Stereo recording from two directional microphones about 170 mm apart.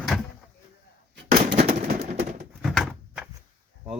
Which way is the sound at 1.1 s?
75° right (ahead or behind).